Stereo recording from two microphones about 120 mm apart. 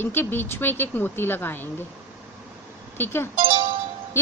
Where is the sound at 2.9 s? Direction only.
20° left (ahead or behind).